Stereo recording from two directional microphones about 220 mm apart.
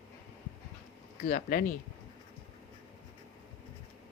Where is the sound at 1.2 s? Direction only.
40° left (ahead or behind).